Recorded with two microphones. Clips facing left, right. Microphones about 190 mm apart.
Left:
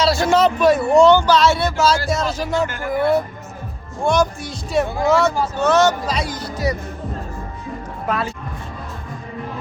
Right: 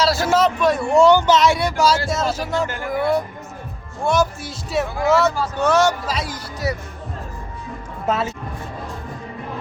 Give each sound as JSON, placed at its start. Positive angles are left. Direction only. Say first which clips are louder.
{"t": 0.0, "sound": "speech", "louder": "left 2 dB", "side_deg": 0}
{"t": 1.0, "sound": "speech", "louder": "right 2 dB", "side_deg": -15}
{"t": 2.0, "sound": "speech", "louder": "left 1 dB", "side_deg": 0}
{"t": 8.0, "sound": "speech", "louder": "right 2 dB", "side_deg": -25}